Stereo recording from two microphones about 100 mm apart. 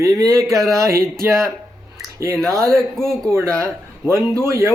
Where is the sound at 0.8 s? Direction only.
30° right (ahead or behind).